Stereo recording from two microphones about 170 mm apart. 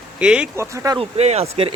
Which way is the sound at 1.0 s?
40° right (ahead or behind).